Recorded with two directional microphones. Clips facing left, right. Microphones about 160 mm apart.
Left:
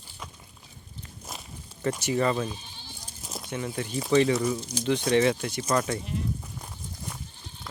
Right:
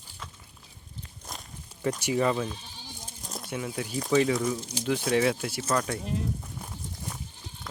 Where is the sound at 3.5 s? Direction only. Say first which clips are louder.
Left 1 dB; 5° right (ahead or behind).